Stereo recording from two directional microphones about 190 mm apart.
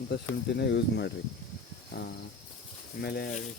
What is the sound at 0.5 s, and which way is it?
Speech, 60° left (ahead or behind).